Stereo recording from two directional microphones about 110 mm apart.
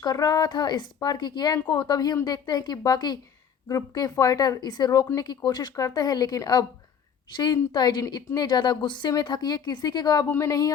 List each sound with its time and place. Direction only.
0.0 s a woman's voice: 40° left (ahead or behind)
10.2 s speech: 25° left (ahead or behind)